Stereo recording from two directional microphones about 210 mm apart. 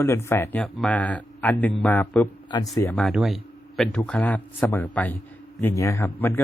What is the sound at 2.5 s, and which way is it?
Speech, 20° left (ahead or behind).